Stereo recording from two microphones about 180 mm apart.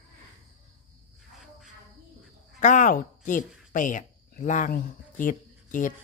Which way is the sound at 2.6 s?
45° left (ahead or behind).